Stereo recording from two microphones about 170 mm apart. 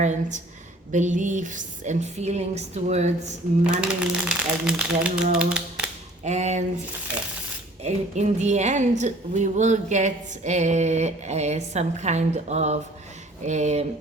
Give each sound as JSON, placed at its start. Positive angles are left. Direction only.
{"t": 0.0, "sound": "speech", "side_deg": -45}
{"t": 4.0, "sound": "speech", "side_deg": -5}
{"t": 6.2, "sound": "speech", "side_deg": -45}
{"t": 7.9, "sound": "speech", "side_deg": -40}